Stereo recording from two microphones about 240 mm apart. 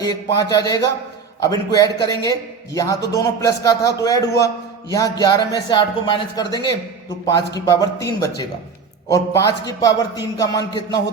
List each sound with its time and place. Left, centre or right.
0.0 s a man's voice: centre